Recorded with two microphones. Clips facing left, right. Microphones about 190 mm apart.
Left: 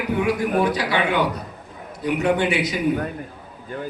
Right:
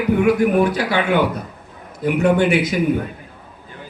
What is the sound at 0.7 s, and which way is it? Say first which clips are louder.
Speech: right 2 dB; 50° right (ahead or behind).